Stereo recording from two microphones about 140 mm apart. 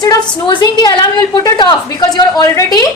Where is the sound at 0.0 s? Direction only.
30° left (ahead or behind).